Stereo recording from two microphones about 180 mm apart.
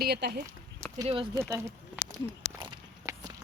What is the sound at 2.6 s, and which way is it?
Walk, 20° right (ahead or behind).